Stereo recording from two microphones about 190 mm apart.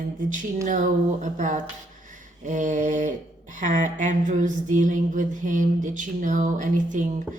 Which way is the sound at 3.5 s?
40° right (ahead or behind).